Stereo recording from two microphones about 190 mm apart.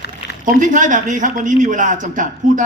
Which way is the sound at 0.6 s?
40° right (ahead or behind).